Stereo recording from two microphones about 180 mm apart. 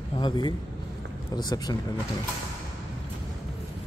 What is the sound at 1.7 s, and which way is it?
Speech, 20° left (ahead or behind).